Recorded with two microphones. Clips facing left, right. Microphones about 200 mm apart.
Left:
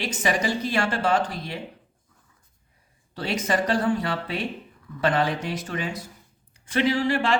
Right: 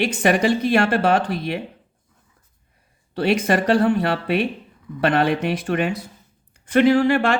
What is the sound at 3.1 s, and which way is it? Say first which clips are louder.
Speech: right 7 dB; 65° right (ahead or behind).